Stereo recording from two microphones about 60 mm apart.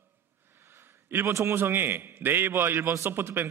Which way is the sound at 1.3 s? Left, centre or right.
Right.